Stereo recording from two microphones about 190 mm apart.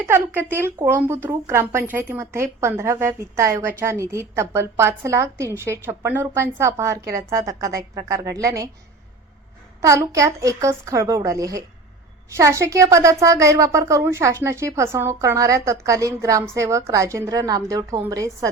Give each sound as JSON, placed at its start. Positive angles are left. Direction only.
{"t": 0.0, "sound": "speech", "side_deg": -10}
{"t": 9.8, "sound": "speech", "side_deg": -15}